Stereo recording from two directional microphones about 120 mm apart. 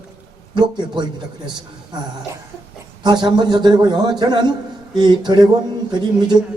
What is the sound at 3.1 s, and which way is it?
A man's voice, 40° right (ahead or behind).